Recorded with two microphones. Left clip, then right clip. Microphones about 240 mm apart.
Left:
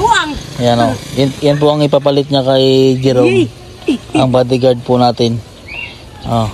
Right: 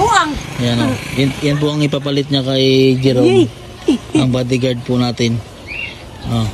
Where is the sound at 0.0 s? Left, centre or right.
Centre.